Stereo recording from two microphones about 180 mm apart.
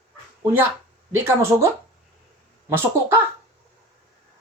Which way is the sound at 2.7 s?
10° right (ahead or behind).